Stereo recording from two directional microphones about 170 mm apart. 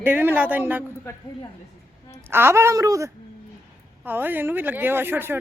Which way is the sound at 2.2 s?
15° right (ahead or behind).